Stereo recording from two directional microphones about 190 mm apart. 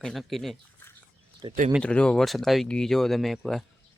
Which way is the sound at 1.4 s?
25° right (ahead or behind).